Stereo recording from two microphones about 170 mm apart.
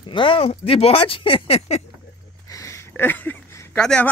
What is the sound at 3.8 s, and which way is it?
Speech, 5° left (ahead or behind).